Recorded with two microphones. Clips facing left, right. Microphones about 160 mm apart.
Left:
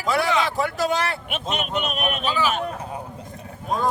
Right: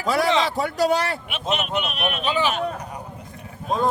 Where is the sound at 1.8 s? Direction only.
45° left (ahead or behind).